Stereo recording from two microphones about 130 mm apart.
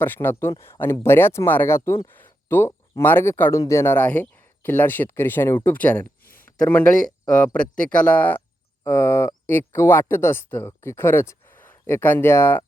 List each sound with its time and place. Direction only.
0.0 s speech: 15° left (ahead or behind)
6.4 s a sound: 10° left (ahead or behind)
7.3 s speech: 10° left (ahead or behind)